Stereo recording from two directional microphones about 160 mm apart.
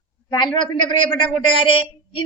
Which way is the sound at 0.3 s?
30° left (ahead or behind).